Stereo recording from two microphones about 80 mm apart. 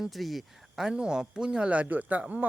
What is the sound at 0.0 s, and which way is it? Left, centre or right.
Speech, centre.